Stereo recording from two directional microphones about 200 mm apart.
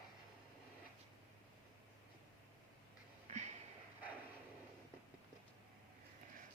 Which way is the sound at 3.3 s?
35° right (ahead or behind).